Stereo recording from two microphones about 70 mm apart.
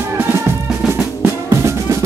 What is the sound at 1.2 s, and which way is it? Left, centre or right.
Music, right.